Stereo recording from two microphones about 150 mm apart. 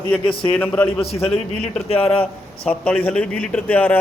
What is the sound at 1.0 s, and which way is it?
A man's voice, 40° left (ahead or behind).